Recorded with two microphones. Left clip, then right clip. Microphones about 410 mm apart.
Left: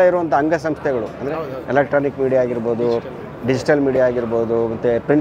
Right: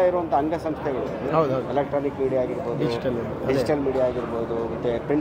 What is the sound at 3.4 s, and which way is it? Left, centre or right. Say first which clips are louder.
Speech: left 7 dB; left.